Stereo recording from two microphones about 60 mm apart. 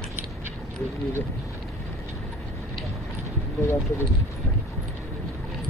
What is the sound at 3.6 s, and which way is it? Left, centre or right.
Speech, left.